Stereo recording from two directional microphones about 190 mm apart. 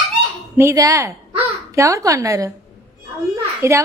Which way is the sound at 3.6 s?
15° right (ahead or behind).